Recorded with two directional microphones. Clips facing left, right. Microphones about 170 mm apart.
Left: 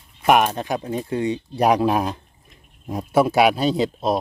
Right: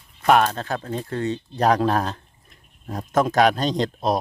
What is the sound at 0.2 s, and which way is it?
Speech, 15° left (ahead or behind).